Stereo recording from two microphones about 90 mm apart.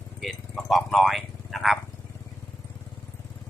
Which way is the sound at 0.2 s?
Centre (ahead or behind).